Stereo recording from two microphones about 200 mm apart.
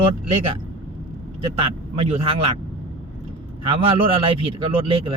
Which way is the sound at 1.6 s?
30° right (ahead or behind).